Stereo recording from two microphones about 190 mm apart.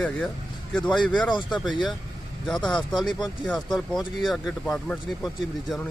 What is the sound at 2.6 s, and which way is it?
Speech, 25° left (ahead or behind).